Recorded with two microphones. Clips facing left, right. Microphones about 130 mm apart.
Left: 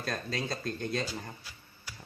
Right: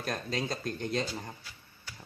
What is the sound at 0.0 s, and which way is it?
Speech, 20° right (ahead or behind).